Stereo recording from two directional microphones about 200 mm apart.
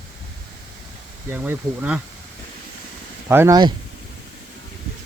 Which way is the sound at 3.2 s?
10° right (ahead or behind).